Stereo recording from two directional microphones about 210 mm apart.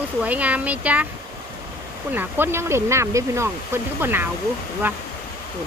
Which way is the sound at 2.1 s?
10° right (ahead or behind).